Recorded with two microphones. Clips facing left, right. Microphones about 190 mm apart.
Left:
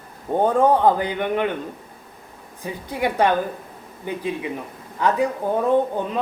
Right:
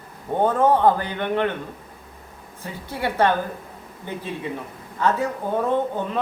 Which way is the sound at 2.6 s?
15° left (ahead or behind).